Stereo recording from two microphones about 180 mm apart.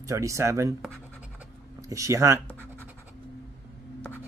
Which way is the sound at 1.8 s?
15° right (ahead or behind).